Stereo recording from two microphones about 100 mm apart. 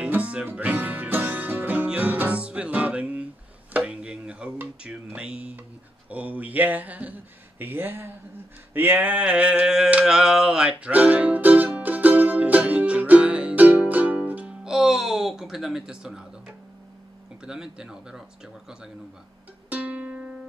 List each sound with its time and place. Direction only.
0.0 s music: 10° right (ahead or behind)
3.7 s a sound: 10° right (ahead or behind)
4.6 s speech: 10° right (ahead or behind)
8.7 s a sound: 20° right (ahead or behind)
17.5 s speech: 5° right (ahead or behind)
19.7 s music: 15° right (ahead or behind)